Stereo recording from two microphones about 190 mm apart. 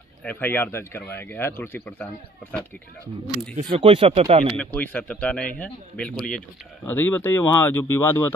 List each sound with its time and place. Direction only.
0.2 s speech: 10° left (ahead or behind)
3.6 s speech: 30° right (ahead or behind)
4.6 s speech: 10° left (ahead or behind)